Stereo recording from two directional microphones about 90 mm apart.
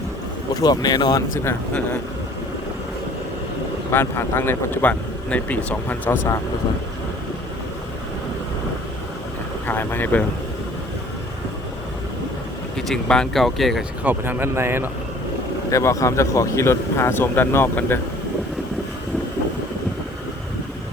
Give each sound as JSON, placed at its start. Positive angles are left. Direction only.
{"t": 0.6, "sound": "speech", "side_deg": 45}
{"t": 3.9, "sound": "speech", "side_deg": 25}
{"t": 9.6, "sound": "speech", "side_deg": 20}
{"t": 12.7, "sound": "speech", "side_deg": 5}
{"t": 14.0, "sound": "speech", "side_deg": -20}
{"t": 15.7, "sound": "speech", "side_deg": 35}